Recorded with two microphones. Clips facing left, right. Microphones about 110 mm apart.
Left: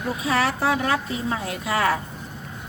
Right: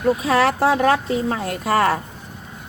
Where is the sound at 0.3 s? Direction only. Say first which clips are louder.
Right 3 dB; 55° right (ahead or behind).